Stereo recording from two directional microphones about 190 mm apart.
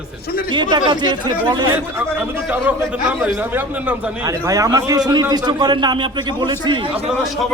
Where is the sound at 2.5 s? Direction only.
5° right (ahead or behind); by 6.9 s 25° right (ahead or behind).